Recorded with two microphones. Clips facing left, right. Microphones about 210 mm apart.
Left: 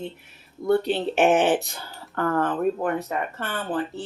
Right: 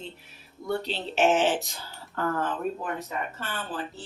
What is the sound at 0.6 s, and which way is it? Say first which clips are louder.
Speech: left 9 dB; 55° left (ahead or behind).